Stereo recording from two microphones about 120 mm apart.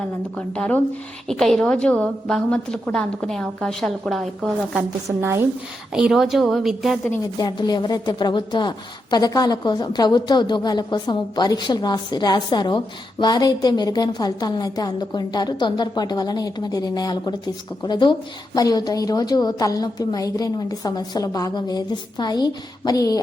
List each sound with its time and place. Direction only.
0.3 s a woman's voice: 10° left (ahead or behind)
5.0 s a woman's voice: 20° right (ahead or behind)
5.9 s a woman's voice: 5° right (ahead or behind)
7.3 s a woman's voice: 35° left (ahead or behind)